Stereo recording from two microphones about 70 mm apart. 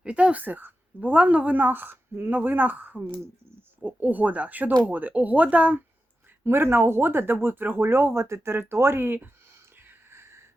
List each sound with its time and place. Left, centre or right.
0.0 s speech: centre
6.4 s speech: right
10.1 s a sound: right